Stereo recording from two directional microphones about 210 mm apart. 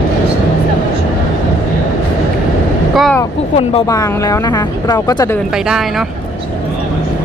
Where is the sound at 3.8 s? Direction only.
15° left (ahead or behind).